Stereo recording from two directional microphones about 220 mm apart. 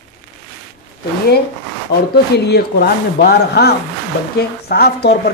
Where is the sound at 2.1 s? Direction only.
45° left (ahead or behind).